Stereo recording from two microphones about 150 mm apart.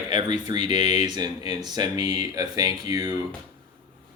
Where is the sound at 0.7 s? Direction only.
40° left (ahead or behind).